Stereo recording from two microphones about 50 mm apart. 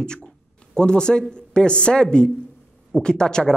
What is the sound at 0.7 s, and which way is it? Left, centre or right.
Speech, centre.